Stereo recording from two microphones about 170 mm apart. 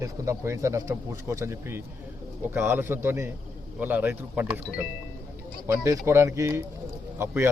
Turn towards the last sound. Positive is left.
turn(degrees=-15)  # may be behind; listen again after turning